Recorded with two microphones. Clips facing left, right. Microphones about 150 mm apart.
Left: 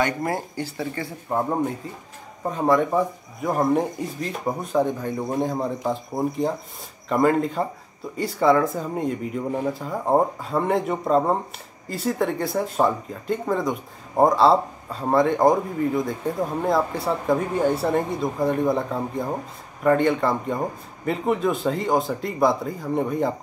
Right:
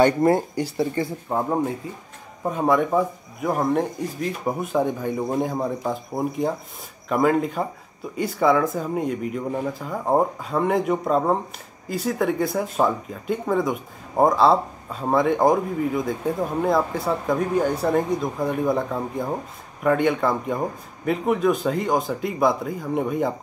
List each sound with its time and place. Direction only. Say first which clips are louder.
0.0 s speech: right 7 dB; 30° right (ahead or behind)
0.6 s speech: right 5 dB; 15° right (ahead or behind)
2.5 s speech: even; 5° right (ahead or behind)